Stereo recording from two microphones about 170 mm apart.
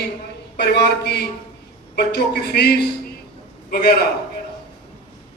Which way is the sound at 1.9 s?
70° left (ahead or behind).